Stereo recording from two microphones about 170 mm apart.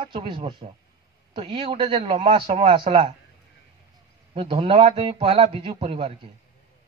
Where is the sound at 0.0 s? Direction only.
30° right (ahead or behind).